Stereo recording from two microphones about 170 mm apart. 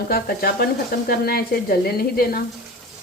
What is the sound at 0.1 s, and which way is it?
Speech, 60° left (ahead or behind).